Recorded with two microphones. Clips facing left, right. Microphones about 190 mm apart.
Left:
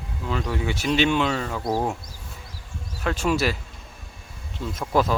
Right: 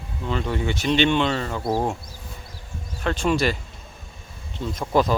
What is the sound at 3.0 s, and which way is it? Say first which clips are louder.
Speech: right 1 dB; 5° left (ahead or behind).